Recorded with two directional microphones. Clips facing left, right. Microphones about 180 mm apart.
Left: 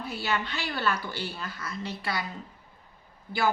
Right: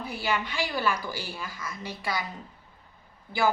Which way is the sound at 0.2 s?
10° right (ahead or behind).